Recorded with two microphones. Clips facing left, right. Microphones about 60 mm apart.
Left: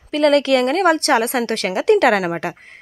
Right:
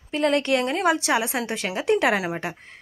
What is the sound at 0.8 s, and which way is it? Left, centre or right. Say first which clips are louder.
A woman's voice: left 6 dB; left.